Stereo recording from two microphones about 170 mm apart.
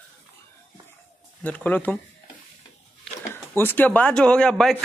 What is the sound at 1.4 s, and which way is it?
Speech, 10° left (ahead or behind).